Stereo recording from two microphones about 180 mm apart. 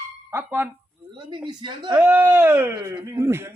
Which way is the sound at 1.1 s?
25° right (ahead or behind).